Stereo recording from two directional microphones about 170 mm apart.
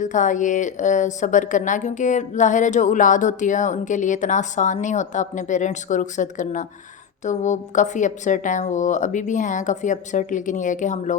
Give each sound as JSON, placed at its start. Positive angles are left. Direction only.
{"t": 0.0, "sound": "a woman's voice", "side_deg": 45}